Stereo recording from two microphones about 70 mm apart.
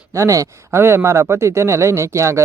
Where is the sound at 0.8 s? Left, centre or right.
Right.